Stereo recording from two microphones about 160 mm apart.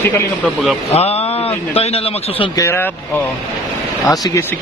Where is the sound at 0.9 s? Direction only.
40° left (ahead or behind).